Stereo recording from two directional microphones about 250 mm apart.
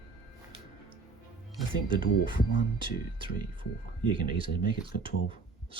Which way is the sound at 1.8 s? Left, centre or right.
Centre.